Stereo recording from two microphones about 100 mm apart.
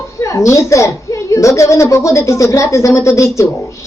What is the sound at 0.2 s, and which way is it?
A woman's voice, 30° left (ahead or behind).